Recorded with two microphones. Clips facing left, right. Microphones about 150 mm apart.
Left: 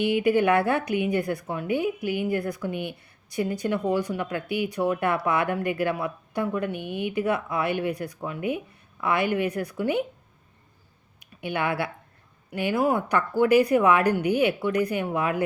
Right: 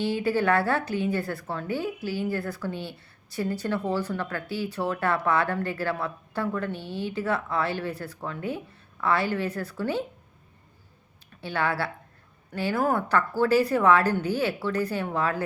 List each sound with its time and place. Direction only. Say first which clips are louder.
0.0 s speech: left 4 dB; 15° left (ahead or behind)
11.2 s a woman's voice: left 1 dB; 15° left (ahead or behind)